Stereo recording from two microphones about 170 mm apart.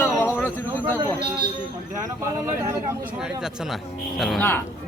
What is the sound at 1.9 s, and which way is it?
Speech, 15° right (ahead or behind).